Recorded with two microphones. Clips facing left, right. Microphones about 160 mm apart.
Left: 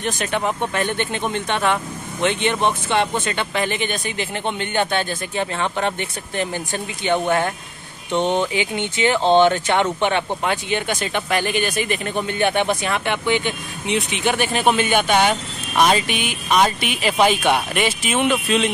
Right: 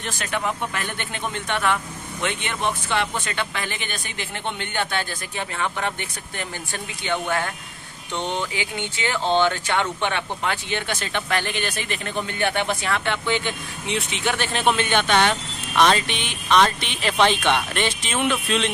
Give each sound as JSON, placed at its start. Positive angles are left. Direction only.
{"t": 0.0, "sound": "speech", "side_deg": 20}